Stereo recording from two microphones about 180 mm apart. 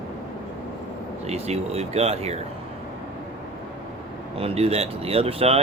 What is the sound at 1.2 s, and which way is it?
Speech, 35° right (ahead or behind).